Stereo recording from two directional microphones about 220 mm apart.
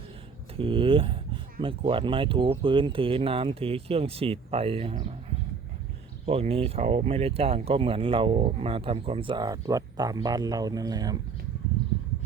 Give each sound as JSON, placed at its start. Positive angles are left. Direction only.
{"t": 0.5, "sound": "speech", "side_deg": -25}
{"t": 6.2, "sound": "speech", "side_deg": -25}